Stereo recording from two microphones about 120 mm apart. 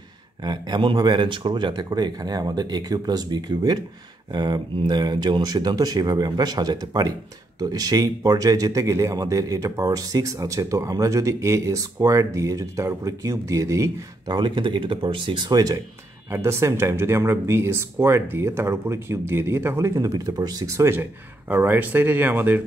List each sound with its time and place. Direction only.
0.4 s a man's voice: 35° right (ahead or behind); by 22.6 s 15° right (ahead or behind)